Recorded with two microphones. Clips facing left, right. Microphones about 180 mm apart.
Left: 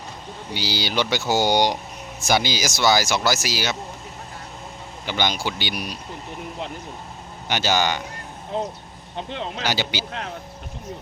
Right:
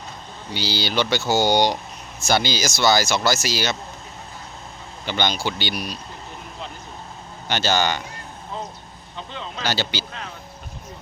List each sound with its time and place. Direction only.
0.5 s speech: 15° left (ahead or behind)
5.0 s speech: 10° left (ahead or behind)
7.4 s speech: 15° left (ahead or behind)
9.1 s speech: 65° left (ahead or behind)
9.6 s speech: 15° left (ahead or behind)